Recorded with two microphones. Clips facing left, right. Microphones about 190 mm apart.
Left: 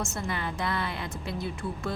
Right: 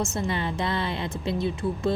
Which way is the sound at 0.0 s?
25° right (ahead or behind).